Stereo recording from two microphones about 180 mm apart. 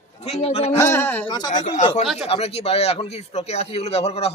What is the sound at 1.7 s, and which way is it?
Speech, 40° left (ahead or behind).